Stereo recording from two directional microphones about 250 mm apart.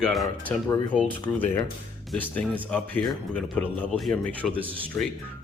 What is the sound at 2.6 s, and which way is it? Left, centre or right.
Speech, centre.